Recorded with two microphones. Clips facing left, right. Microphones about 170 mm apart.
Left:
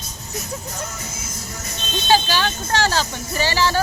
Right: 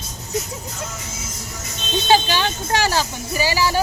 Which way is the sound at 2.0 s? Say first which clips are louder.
Right 1 dB; 20° right (ahead or behind).